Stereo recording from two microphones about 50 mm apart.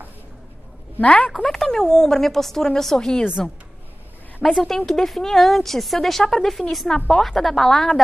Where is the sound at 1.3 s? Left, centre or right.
Centre.